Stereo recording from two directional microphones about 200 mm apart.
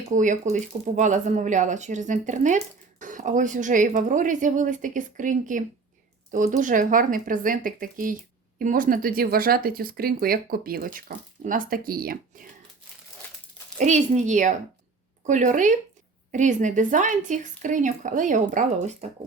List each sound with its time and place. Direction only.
0.1 s speech: 40° right (ahead or behind)
13.7 s speech: 35° right (ahead or behind)